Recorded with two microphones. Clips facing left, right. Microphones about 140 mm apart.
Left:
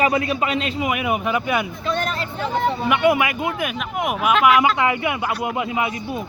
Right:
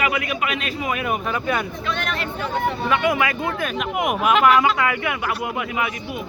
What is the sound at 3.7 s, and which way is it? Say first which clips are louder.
Speech: right 2 dB; centre (ahead or behind).